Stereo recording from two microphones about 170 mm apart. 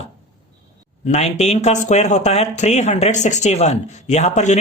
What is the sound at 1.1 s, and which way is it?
Speech, 40° left (ahead or behind).